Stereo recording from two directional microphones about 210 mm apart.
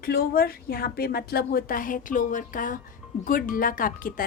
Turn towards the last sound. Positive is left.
turn(degrees=40)  # may be behind; listen again after turning